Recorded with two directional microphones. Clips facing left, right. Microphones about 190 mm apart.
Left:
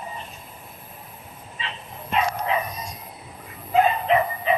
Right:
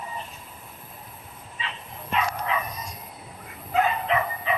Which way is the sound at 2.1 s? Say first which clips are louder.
Left 3 dB; 25° left (ahead or behind).